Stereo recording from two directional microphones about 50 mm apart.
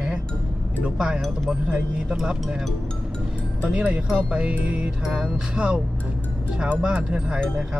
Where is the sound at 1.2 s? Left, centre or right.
Centre.